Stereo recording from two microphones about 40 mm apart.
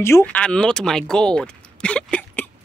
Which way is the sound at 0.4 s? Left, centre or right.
Left.